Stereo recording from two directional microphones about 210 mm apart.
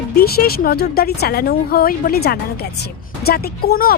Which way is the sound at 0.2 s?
50° left (ahead or behind).